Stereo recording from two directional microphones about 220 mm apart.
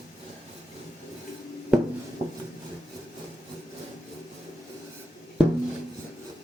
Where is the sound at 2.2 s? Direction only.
30° right (ahead or behind).